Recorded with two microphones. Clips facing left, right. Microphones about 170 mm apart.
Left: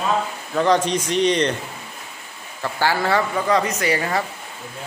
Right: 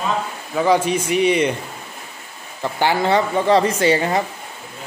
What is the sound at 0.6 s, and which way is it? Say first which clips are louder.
Speech: right 1 dB; 10° right (ahead or behind).